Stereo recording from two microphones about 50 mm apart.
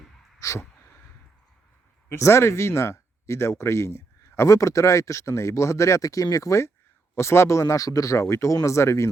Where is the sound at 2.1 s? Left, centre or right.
Left.